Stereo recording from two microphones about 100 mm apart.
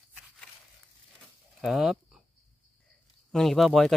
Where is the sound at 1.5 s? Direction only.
5° right (ahead or behind).